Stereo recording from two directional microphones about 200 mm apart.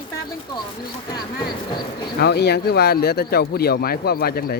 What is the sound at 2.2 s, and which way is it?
Speech, 55° left (ahead or behind).